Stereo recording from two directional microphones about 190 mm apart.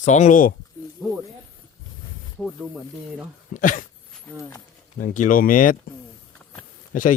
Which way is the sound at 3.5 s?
40° left (ahead or behind).